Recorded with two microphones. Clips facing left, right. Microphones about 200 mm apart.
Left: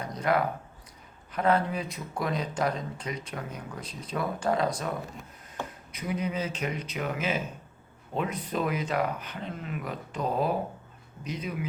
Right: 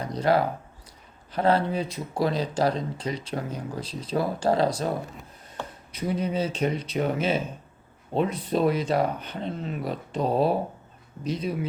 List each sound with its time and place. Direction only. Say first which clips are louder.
0.0 s speech: right 4 dB; 30° right (ahead or behind)